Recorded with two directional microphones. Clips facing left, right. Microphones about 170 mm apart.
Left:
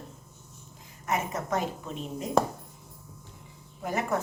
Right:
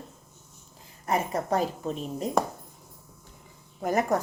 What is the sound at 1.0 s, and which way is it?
Speech, 35° right (ahead or behind).